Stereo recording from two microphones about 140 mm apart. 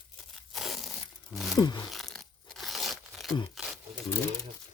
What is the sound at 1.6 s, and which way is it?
Speech, 30° left (ahead or behind).